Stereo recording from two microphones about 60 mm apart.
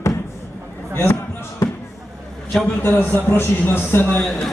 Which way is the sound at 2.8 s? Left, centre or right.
Left.